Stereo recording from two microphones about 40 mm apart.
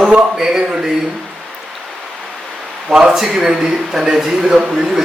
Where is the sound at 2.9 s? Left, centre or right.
Centre.